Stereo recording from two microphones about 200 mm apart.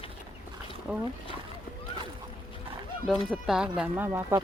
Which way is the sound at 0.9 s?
5° right (ahead or behind).